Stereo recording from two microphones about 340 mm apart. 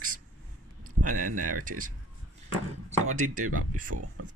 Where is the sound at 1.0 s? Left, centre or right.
Right.